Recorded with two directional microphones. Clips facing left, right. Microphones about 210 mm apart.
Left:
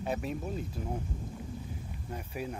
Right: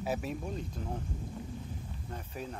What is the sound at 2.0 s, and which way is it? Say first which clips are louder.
Speech: left 4 dB; 10° left (ahead or behind).